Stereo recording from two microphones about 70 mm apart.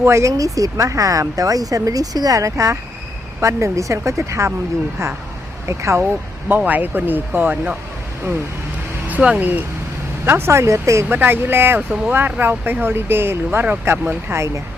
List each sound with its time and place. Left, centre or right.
0.0 s speech: right
5.6 s speech: right
6.7 s speech: right
9.0 s a sound: right
9.4 s speech: right
10.2 s speech: right
11.1 s speech: right